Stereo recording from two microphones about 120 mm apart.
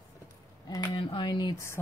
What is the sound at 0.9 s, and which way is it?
Speech, 40° left (ahead or behind).